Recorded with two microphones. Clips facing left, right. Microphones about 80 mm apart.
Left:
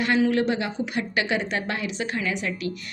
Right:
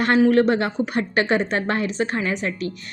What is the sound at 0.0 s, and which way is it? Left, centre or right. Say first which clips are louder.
A woman's voice: right 5 dB; right.